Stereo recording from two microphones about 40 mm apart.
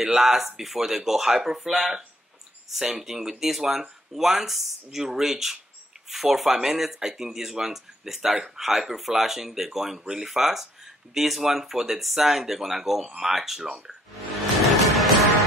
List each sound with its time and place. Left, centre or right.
0.0 s speech: centre
14.6 s music: centre